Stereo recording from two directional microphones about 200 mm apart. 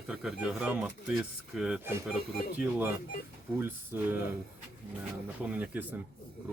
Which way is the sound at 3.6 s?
10° right (ahead or behind).